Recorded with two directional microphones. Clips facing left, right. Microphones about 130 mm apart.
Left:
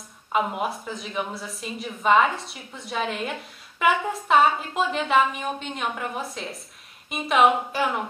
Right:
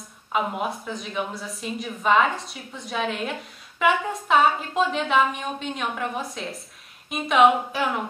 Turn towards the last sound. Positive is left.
turn(degrees=0)  # may be behind; listen again after turning